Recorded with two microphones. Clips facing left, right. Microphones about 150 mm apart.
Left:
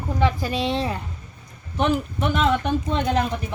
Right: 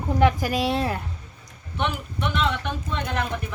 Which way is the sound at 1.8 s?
40° left (ahead or behind).